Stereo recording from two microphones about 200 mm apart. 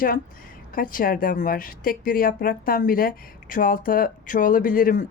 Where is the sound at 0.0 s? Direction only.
45° left (ahead or behind).